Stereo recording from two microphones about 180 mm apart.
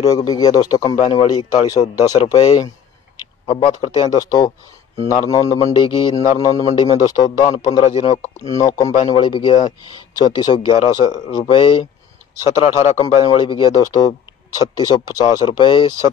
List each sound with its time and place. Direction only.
0.0 s speech: 20° left (ahead or behind)
7.8 s speech: 35° left (ahead or behind)
8.5 s speech: 20° left (ahead or behind); by 12.9 s 40° left (ahead or behind)
13.0 s speech: 30° left (ahead or behind)